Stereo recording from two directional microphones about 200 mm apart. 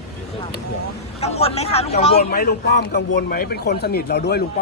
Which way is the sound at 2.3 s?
45° left (ahead or behind).